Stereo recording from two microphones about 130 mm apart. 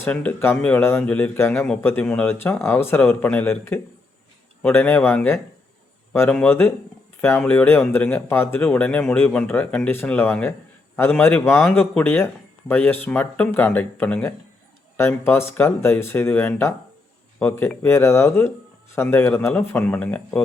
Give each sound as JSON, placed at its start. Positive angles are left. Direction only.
{"t": 0.0, "sound": "speech", "side_deg": 10}